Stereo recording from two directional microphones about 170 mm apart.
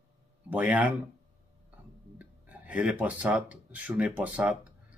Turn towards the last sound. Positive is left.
turn(degrees=-10)  # may be behind; listen again after turning